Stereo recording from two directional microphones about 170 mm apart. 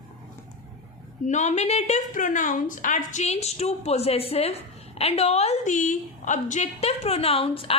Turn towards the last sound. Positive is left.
turn(degrees=35)  # may be behind; listen again after turning